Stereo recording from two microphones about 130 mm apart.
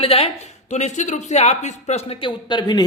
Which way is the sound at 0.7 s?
65° left (ahead or behind).